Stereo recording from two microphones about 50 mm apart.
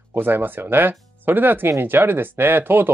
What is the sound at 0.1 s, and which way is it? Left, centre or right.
Speech, right.